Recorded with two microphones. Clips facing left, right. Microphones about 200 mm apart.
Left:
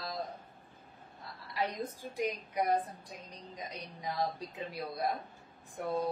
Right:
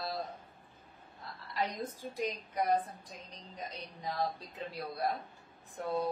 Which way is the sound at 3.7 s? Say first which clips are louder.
Left 1 dB; 10° left (ahead or behind).